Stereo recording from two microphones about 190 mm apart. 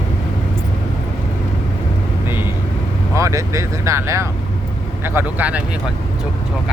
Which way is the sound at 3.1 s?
15° right (ahead or behind).